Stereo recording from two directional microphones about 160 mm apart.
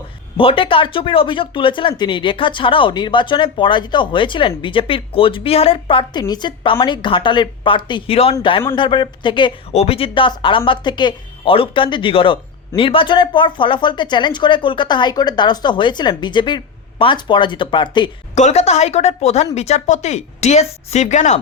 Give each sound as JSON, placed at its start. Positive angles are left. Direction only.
{"t": 0.3, "sound": "speech", "side_deg": 35}
{"t": 18.3, "sound": "speech", "side_deg": 45}